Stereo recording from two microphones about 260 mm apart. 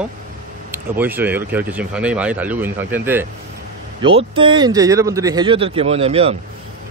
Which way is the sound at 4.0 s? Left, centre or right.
Right.